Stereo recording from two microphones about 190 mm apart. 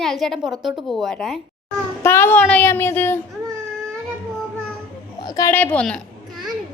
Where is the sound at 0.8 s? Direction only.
Centre (ahead or behind).